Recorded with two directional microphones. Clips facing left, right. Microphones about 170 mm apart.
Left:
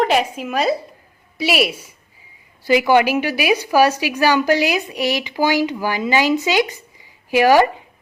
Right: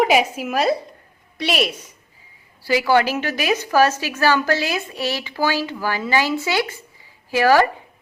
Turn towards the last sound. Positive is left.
turn(degrees=15)  # may be behind; listen again after turning